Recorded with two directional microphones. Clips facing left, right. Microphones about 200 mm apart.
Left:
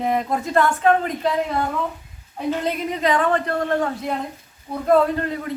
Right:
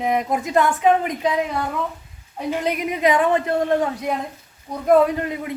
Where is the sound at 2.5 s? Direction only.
15° right (ahead or behind).